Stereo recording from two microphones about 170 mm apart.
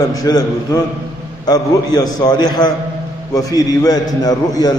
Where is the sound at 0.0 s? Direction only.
20° left (ahead or behind).